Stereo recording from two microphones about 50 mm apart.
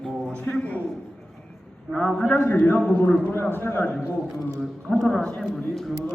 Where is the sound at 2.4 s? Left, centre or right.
Left.